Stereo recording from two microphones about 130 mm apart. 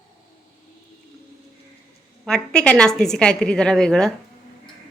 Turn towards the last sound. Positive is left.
turn(degrees=5)  # may be behind; listen again after turning